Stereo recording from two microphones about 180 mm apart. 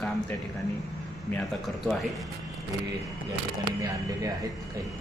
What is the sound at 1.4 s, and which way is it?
Speech, centre (ahead or behind).